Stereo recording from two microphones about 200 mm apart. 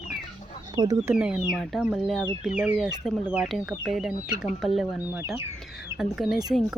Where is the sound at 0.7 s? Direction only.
20° right (ahead or behind).